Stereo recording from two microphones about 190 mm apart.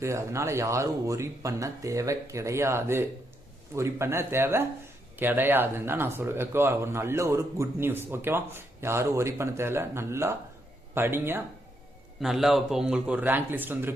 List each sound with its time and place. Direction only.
0.0 s speech: 15° right (ahead or behind)
12.2 s speech: centre (ahead or behind)